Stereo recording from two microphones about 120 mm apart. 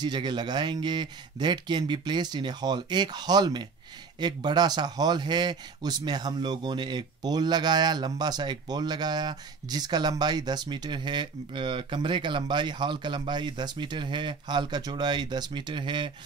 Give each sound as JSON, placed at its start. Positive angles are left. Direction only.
{"t": 0.0, "sound": "speech", "side_deg": -40}